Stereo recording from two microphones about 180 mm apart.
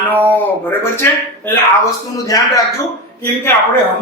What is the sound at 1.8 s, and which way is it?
Speech, 20° left (ahead or behind).